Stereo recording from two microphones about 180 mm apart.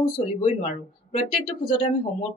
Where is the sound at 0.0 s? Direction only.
30° left (ahead or behind).